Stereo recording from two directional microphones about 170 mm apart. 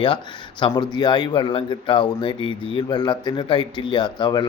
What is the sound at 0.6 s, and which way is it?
Speech, 25° left (ahead or behind).